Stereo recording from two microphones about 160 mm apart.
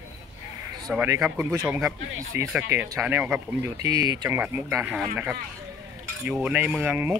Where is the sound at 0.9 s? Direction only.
15° right (ahead or behind).